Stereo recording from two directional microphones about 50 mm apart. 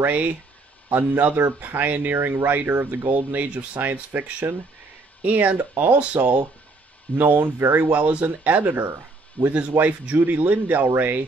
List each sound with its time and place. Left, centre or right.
0.0 s speech: right
0.9 s speech: right
2.1 s speech: right
7.1 s speech: left
7.7 s a man's voice: right